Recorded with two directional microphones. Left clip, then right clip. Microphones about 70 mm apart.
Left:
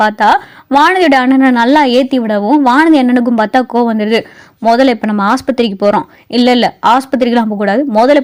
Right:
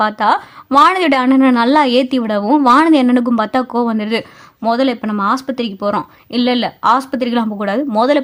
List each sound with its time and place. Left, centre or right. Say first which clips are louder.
0.0 s a woman's voice: left 5 dB; left
4.6 s speech: left 6 dB; left